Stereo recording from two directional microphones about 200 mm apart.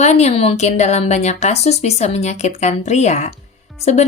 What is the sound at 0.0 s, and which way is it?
Speech, 35° left (ahead or behind).